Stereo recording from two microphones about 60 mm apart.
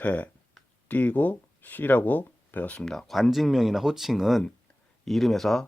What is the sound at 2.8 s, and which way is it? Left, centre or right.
Speech, centre.